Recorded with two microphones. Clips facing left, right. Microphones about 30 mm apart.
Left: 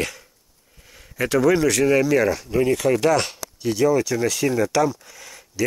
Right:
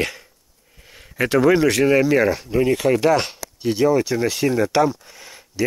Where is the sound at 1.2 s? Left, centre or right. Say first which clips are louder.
Right 2 dB; right.